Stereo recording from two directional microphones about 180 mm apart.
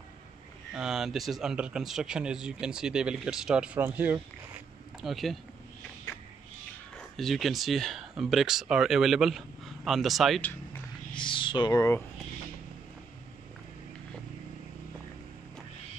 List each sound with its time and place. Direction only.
0.7 s speech: centre (ahead or behind)
7.2 s speech: centre (ahead or behind)
11.1 s speech: 25° left (ahead or behind)